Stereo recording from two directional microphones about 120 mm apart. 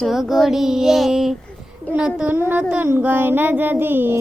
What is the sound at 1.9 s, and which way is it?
Child singing, 10° right (ahead or behind).